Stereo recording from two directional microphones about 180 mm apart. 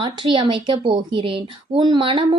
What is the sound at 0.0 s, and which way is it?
A woman's voice, 30° right (ahead or behind).